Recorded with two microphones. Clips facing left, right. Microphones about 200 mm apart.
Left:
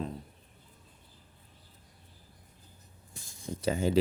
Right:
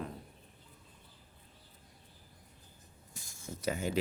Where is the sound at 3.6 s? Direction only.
30° left (ahead or behind).